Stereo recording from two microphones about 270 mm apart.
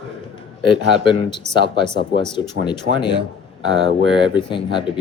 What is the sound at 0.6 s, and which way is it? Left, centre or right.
Speech, centre.